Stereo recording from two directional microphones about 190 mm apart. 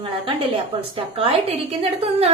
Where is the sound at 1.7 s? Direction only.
30° right (ahead or behind).